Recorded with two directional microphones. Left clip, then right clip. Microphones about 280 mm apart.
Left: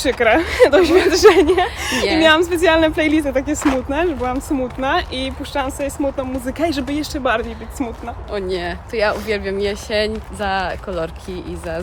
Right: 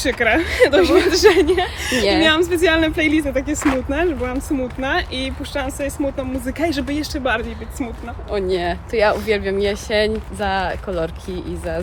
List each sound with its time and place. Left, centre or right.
0.0 s speech: centre
8.3 s speech: centre